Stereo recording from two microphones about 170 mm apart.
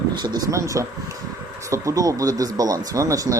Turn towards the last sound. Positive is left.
turn(degrees=-20)  # may be behind; listen again after turning